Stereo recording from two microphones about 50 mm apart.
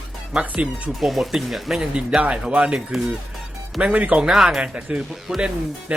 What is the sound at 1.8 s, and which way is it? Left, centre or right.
Speech, right.